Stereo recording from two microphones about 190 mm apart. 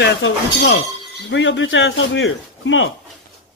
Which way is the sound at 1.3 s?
75° left (ahead or behind).